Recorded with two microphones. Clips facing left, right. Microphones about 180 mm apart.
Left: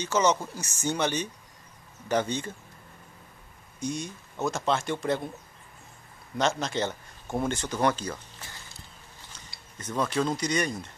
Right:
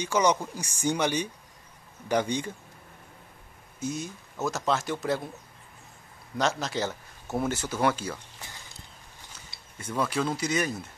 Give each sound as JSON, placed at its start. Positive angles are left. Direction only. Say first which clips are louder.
{"t": 0.0, "sound": "speech", "louder": "even", "side_deg": -10}
{"t": 3.8, "sound": "speech", "louder": "even", "side_deg": -5}
{"t": 6.3, "sound": "speech", "louder": "left 1 dB", "side_deg": 0}
{"t": 9.8, "sound": "speech", "louder": "left 1 dB", "side_deg": -10}